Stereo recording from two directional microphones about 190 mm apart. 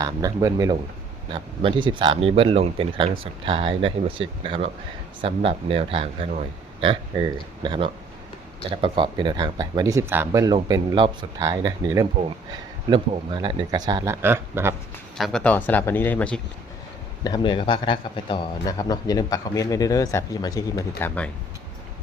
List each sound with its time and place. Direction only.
0.0 s speech: 20° right (ahead or behind)
15.2 s speech: 5° left (ahead or behind)
17.2 s a man's voice: 20° left (ahead or behind)